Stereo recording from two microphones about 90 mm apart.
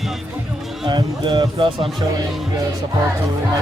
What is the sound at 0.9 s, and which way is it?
Speech, 60° right (ahead or behind).